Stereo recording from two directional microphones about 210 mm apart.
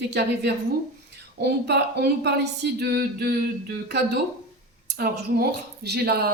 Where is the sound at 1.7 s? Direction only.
50° right (ahead or behind).